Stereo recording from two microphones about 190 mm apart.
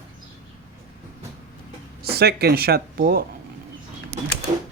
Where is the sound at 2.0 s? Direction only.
55° right (ahead or behind).